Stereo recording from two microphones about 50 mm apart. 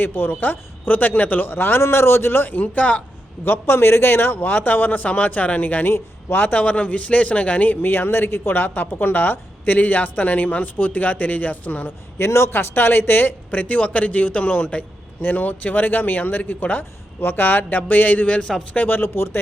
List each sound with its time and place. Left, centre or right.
0.0 s a woman's voice: left
3.4 s a man's voice: left
5.9 s a woman's voice: left
12.2 s a woman's voice: left
18.9 s a man's voice: left